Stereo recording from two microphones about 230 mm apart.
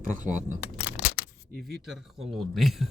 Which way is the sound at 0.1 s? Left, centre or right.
Right.